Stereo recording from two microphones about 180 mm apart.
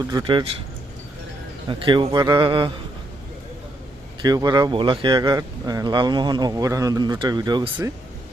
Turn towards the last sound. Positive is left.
turn(degrees=-25)  # may be behind; listen again after turning